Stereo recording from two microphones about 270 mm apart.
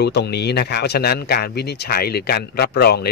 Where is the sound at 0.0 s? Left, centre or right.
Left.